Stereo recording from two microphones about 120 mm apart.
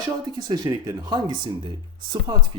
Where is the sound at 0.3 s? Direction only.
35° right (ahead or behind).